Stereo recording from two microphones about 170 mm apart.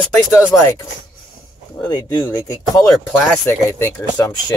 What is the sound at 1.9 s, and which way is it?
Speech, 25° left (ahead or behind).